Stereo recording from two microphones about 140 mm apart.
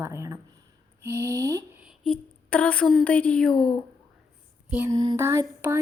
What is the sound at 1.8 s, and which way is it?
A woman's voice, centre (ahead or behind).